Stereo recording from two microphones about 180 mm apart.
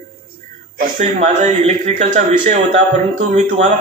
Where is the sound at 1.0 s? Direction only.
40° right (ahead or behind).